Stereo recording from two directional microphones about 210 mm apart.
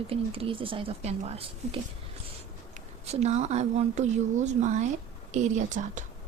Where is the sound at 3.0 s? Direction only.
30° right (ahead or behind).